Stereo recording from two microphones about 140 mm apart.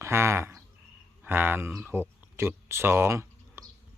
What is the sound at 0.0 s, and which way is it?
Cricket, 20° right (ahead or behind).